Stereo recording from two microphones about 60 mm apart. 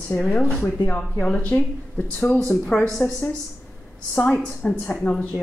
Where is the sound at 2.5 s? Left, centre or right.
Centre.